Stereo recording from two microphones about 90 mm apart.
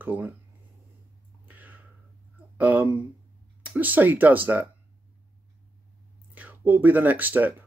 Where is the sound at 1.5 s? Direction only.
20° right (ahead or behind).